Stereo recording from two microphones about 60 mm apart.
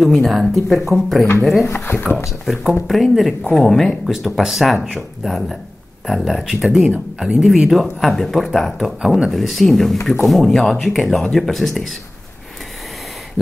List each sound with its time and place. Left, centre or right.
0.0 s speech: centre
1.7 s speech: left
2.4 s speech: centre
4.4 s speech: centre
9.0 s speech: centre
9.3 s speech: centre